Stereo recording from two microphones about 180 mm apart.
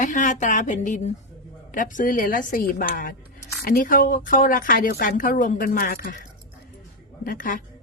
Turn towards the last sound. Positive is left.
turn(degrees=50)  # may be behind; listen again after turning